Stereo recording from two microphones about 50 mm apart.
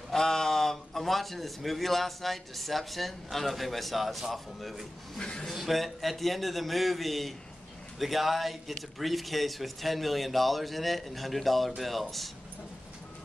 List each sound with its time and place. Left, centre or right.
0.1 s a man's voice: centre
5.2 s speech: centre
5.5 s a man's voice: centre